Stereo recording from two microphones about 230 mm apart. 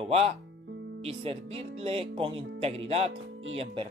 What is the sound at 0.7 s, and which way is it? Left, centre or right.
Music, right.